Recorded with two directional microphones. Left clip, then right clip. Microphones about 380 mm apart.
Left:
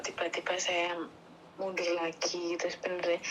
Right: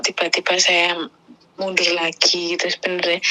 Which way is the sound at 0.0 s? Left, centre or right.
Right.